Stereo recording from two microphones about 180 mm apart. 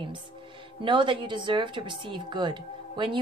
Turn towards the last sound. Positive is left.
turn(degrees=-25)  # may be behind; listen again after turning